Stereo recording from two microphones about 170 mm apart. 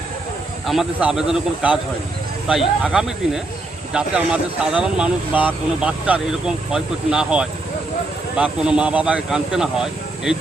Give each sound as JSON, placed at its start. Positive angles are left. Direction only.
{"t": 0.7, "sound": "speech", "side_deg": -5}